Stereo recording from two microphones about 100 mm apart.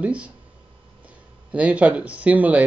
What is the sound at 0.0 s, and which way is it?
Speech, 15° right (ahead or behind).